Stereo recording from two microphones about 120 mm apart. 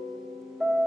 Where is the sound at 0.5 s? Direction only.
5° right (ahead or behind).